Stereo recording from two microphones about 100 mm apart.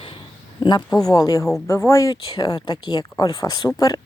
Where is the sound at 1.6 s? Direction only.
30° left (ahead or behind).